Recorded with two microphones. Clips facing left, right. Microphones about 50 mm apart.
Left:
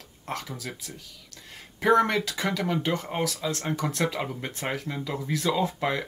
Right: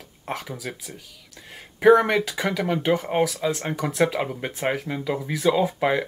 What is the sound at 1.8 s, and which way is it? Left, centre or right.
Speech, centre.